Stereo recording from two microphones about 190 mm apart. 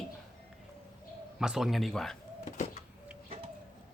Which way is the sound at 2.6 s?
35° left (ahead or behind).